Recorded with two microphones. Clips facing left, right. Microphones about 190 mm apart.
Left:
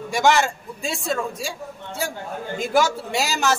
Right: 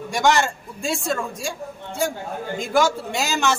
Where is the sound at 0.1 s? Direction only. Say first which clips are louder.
Left 1 dB; 5° left (ahead or behind).